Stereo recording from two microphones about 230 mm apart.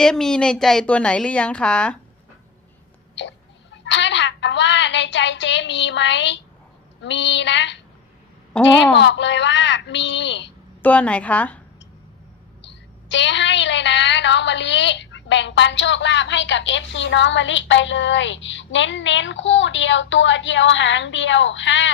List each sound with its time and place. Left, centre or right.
0.0 s a woman's voice: centre
3.2 s a sound: left
7.0 s a woman's voice: left
10.8 s a woman's voice: centre
12.6 s a woman's voice: left